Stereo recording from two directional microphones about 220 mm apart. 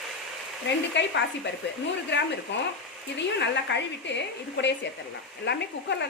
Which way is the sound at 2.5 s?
55° left (ahead or behind).